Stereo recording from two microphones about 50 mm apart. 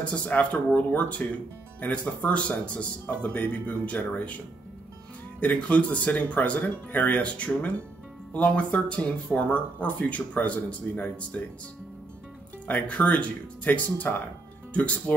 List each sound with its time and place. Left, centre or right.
0.0 s speech: left
5.4 s speech: left
12.8 s speech: left